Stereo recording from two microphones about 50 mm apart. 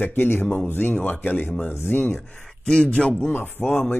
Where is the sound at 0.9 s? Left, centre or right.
Left.